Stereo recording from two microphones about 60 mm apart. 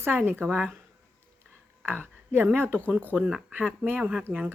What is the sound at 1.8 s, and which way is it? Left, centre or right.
A woman's voice, right.